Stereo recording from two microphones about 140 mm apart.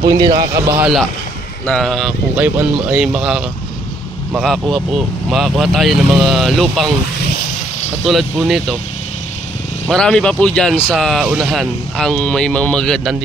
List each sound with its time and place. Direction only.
0.1 s speech: 30° right (ahead or behind)
1.7 s speech: centre (ahead or behind)
2.3 s speech: 10° right (ahead or behind)
8.0 s speech: centre (ahead or behind)
9.8 s speech: 5° left (ahead or behind)